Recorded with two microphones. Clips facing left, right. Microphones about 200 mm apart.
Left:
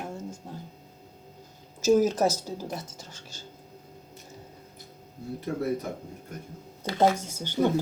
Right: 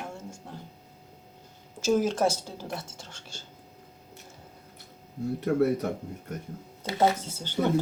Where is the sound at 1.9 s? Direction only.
5° left (ahead or behind).